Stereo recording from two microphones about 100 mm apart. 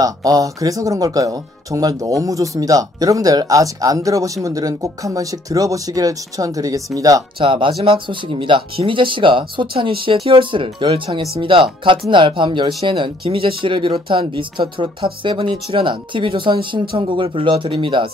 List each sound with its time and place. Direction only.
0.0 s speech: 40° right (ahead or behind)
7.3 s speech: 60° right (ahead or behind)